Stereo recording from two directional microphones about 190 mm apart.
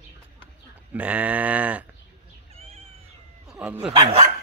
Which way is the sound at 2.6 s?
30° right (ahead or behind).